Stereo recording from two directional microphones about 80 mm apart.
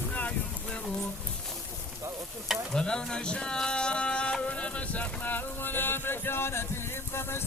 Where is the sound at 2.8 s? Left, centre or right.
Centre; by 6.6 s left.